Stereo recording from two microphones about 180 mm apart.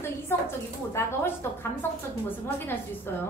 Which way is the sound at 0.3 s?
15° left (ahead or behind).